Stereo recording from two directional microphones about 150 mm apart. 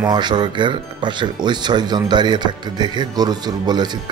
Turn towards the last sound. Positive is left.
turn(degrees=-30)  # may be behind; listen again after turning